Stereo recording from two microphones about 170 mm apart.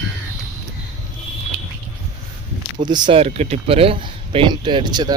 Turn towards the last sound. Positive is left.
turn(degrees=-25)  # may be behind; listen again after turning